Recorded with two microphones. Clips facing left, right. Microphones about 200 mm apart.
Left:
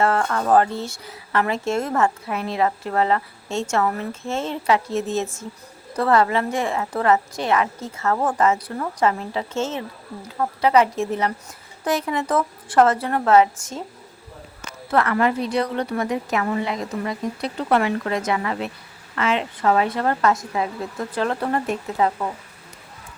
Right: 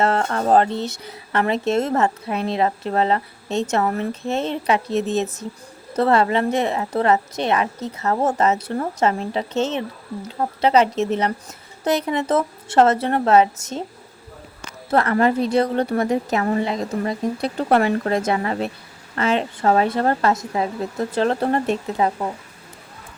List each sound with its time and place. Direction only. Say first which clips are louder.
0.0 s a woman's voice: right 1 dB; 25° right (ahead or behind)
14.8 s a woman's voice: right 2 dB; 35° right (ahead or behind)